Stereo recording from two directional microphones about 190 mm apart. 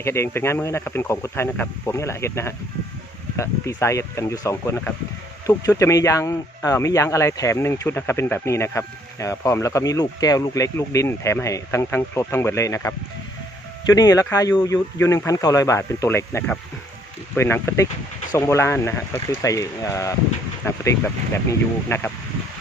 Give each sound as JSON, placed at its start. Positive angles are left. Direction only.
{"t": 0.0, "sound": "speech", "side_deg": 15}
{"t": 21.8, "sound": "speech", "side_deg": 10}